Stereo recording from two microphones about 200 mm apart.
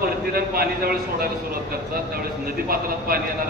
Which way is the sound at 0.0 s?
50° right (ahead or behind).